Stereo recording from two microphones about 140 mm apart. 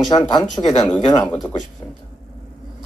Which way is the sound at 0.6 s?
30° left (ahead or behind).